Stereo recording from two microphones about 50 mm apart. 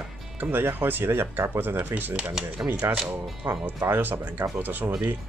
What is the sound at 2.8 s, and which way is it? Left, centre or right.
Speech, right.